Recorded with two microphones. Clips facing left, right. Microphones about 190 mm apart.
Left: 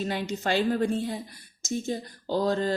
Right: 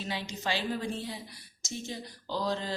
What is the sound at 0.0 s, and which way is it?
Speech, 50° left (ahead or behind).